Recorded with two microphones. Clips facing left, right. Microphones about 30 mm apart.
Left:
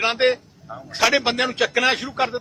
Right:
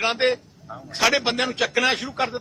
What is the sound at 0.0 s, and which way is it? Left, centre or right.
A man's voice, centre.